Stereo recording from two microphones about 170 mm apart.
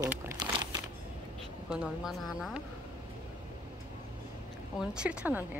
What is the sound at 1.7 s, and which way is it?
Speech, 5° right (ahead or behind).